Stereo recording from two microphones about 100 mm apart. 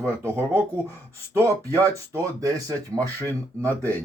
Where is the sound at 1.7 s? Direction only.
20° left (ahead or behind).